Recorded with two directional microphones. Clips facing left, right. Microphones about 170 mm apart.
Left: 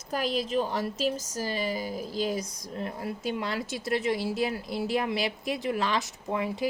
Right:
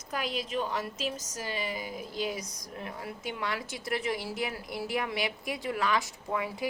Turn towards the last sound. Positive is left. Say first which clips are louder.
# left 3 dB
turn(degrees=25)  # may be behind; listen again after turning